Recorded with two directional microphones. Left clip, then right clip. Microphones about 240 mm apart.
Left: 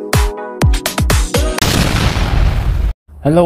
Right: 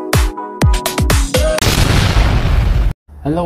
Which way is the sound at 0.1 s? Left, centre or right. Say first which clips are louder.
Left 1 dB; centre.